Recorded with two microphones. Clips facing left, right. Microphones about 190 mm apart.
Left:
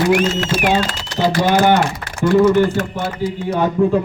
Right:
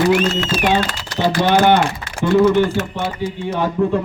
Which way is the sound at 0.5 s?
70° left (ahead or behind).